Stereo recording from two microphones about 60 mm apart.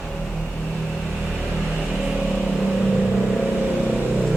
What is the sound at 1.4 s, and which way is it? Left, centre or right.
Vehicle, centre.